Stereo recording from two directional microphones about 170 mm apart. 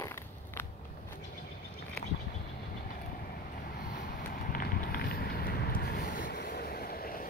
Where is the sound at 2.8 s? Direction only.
55° left (ahead or behind).